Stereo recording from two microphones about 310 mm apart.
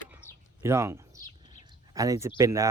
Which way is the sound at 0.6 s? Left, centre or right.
Centre.